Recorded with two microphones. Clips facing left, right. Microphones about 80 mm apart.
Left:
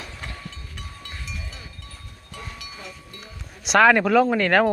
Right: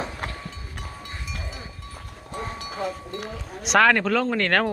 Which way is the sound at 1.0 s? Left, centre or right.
Right.